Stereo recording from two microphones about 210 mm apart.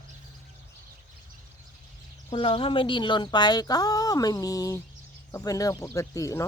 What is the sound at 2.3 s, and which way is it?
Speech, 25° left (ahead or behind).